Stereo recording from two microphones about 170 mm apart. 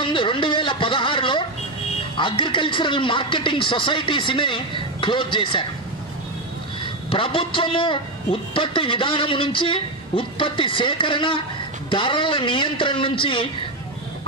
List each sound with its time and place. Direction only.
0.0 s a sound: 30° left (ahead or behind)
2.1 s speech: 30° left (ahead or behind)
6.8 s a man's voice: 30° left (ahead or behind)